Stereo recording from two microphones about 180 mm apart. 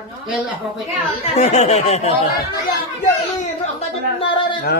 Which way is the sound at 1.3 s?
40° left (ahead or behind).